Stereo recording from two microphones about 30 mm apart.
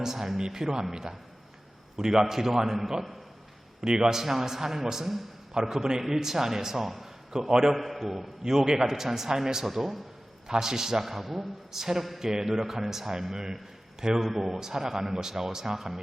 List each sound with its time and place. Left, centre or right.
0.0 s a man's voice: centre
3.8 s speech: right
4.1 s a man's voice: centre
7.3 s speech: centre
7.8 s a man's voice: centre
8.4 s a man's voice: centre
14.3 s a man's voice: centre